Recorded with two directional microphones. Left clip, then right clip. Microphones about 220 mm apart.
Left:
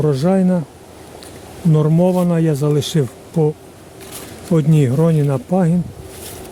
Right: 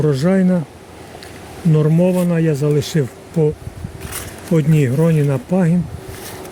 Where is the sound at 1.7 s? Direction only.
15° left (ahead or behind).